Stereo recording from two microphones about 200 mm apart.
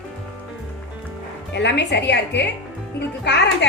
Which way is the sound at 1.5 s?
60° left (ahead or behind).